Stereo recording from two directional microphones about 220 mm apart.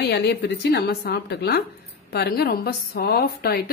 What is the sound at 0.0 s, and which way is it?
A woman's voice, 50° left (ahead or behind).